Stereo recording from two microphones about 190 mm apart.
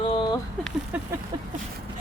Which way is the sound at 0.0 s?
25° left (ahead or behind).